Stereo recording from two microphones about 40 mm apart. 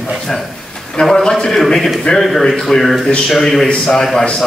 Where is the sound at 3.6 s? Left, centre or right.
Centre.